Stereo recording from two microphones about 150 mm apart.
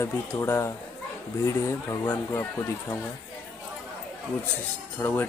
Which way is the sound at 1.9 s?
20° left (ahead or behind).